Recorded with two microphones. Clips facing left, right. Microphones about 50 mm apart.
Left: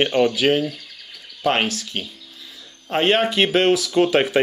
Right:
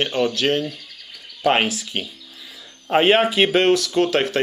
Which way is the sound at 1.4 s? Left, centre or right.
Centre.